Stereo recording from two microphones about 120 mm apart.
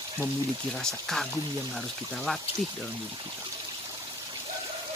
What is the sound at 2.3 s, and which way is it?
Speech, 5° left (ahead or behind).